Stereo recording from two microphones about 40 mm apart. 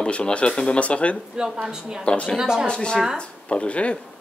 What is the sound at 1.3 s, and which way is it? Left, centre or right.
Speech, centre.